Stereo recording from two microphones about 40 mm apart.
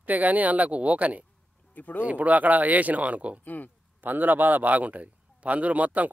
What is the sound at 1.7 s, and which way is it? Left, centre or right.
Speech, left.